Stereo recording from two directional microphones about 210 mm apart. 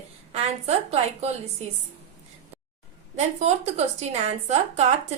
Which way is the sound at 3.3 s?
30° right (ahead or behind).